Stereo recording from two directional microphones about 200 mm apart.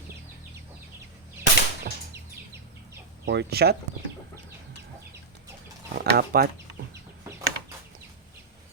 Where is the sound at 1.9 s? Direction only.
45° right (ahead or behind).